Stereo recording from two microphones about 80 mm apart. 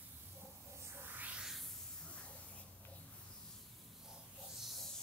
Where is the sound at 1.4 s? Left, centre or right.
Centre.